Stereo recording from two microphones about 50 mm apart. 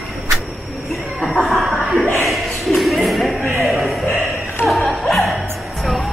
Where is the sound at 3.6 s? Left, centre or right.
Centre.